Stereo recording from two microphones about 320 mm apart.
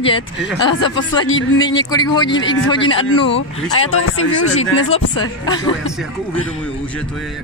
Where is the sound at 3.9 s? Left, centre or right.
Left.